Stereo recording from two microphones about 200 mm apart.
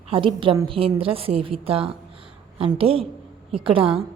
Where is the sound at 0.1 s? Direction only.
25° right (ahead or behind).